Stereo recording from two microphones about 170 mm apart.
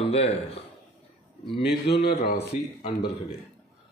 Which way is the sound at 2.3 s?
40° left (ahead or behind).